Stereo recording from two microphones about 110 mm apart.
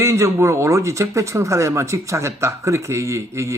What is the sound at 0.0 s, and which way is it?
Speech, 25° right (ahead or behind).